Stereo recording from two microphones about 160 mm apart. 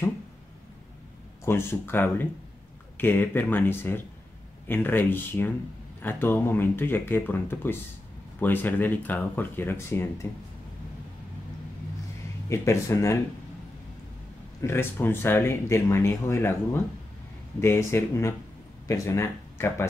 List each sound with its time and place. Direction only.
1.4 s speech: 15° left (ahead or behind)
12.4 s speech: 15° left (ahead or behind)
14.6 s speech: 15° left (ahead or behind)